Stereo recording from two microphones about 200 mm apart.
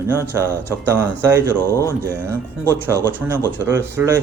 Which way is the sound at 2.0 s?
10° right (ahead or behind).